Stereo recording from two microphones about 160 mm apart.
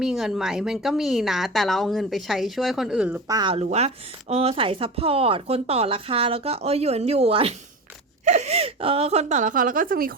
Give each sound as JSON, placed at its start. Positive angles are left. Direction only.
{"t": 0.0, "sound": "a woman's voice", "side_deg": -5}
{"t": 3.2, "sound": "speech", "side_deg": -25}
{"t": 3.5, "sound": "speech", "side_deg": -40}